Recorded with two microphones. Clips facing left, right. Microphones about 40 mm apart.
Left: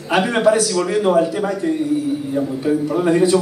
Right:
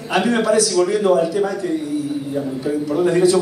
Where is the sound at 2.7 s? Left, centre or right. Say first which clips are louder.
Left 4 dB; left.